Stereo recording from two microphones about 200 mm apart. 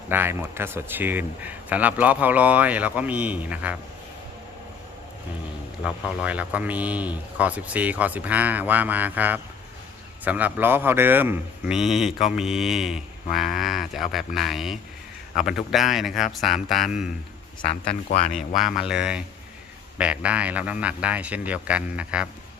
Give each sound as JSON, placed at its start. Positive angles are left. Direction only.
{"t": 0.1, "sound": "speech", "side_deg": -10}
{"t": 5.8, "sound": "a man's voice", "side_deg": -5}
{"t": 17.6, "sound": "speech", "side_deg": 30}
{"t": 18.3, "sound": "a man's voice", "side_deg": 0}